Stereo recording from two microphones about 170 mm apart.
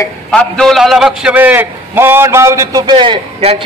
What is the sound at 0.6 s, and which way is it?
A man's voice, centre (ahead or behind).